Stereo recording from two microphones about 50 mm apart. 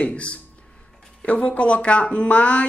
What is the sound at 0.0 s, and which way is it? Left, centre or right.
Speech, left.